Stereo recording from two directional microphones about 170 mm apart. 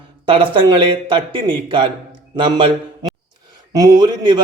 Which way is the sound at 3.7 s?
20° right (ahead or behind).